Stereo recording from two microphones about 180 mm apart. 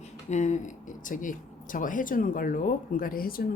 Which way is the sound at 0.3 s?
40° left (ahead or behind).